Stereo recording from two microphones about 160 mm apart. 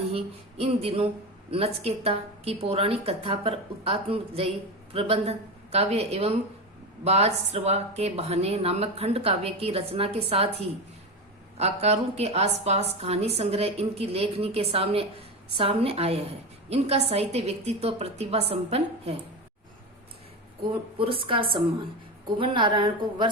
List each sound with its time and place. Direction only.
0.1 s a sound: 35° right (ahead or behind)
1.5 s speech: 40° right (ahead or behind)
21.0 s speech: 35° right (ahead or behind)